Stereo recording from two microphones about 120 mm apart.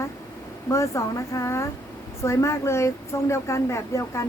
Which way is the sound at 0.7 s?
25° left (ahead or behind).